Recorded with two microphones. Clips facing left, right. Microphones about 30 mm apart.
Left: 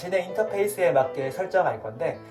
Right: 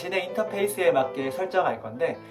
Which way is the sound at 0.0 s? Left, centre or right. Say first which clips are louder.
Left 2 dB; right.